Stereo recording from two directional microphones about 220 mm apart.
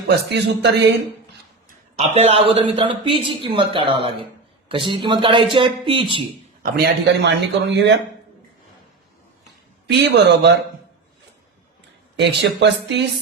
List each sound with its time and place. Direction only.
0.1 s speech: 50° right (ahead or behind)
2.0 s speech: 30° right (ahead or behind)
6.8 s speech: 50° right (ahead or behind)
9.8 s speech: 50° right (ahead or behind)
12.1 s speech: 50° right (ahead or behind)